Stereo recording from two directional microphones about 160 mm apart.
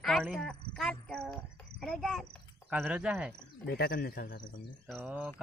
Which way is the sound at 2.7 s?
10° right (ahead or behind).